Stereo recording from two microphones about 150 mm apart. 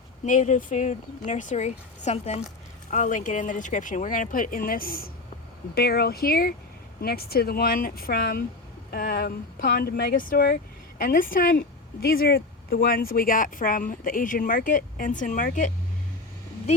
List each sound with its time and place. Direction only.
0.3 s a woman's voice: 60° left (ahead or behind); by 5.1 s 75° left (ahead or behind)
5.7 s speech: 90° left; by 11.5 s 70° left (ahead or behind)
12.0 s speech: 80° left; by 15.7 s 60° left (ahead or behind)